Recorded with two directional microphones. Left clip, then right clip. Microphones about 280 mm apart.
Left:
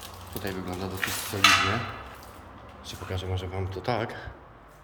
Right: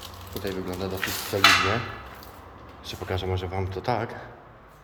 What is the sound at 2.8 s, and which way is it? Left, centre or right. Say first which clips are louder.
A man's voice: right 6 dB; centre.